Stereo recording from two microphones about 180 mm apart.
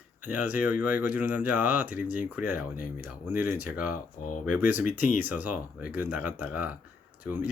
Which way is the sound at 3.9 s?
45° left (ahead or behind).